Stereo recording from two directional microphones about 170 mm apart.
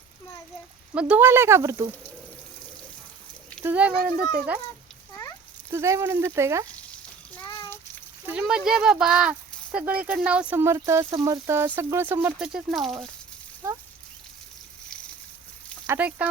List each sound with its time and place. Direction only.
0.9 s speech: 10° right (ahead or behind)
3.6 s speech: 10° right (ahead or behind)
5.7 s speech: 15° right (ahead or behind)
7.5 s a sound: 15° left (ahead or behind)
8.3 s speech: 5° right (ahead or behind)
12.5 s speech: centre (ahead or behind)
15.9 s speech: 10° right (ahead or behind)